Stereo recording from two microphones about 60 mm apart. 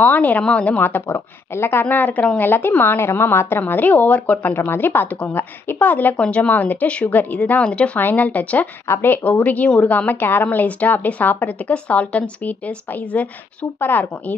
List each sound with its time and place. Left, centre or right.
0.0 s a woman's voice: left
8.0 s a woman's voice: left
8.8 s a woman's voice: left
13.7 s a woman's voice: left